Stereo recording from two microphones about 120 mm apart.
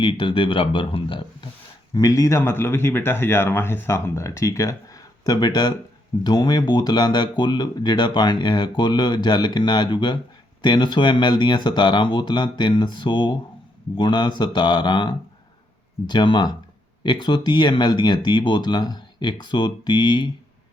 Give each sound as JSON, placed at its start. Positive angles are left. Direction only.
{"t": 0.0, "sound": "speech", "side_deg": 45}
{"t": 2.0, "sound": "speech", "side_deg": 30}